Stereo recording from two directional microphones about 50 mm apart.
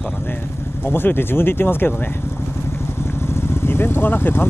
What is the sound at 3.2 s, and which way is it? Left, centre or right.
Vehicle, left.